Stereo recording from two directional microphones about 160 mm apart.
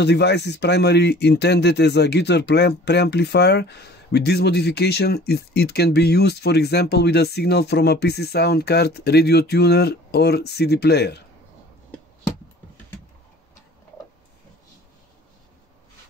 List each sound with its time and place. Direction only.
0.0 s speech: 90° left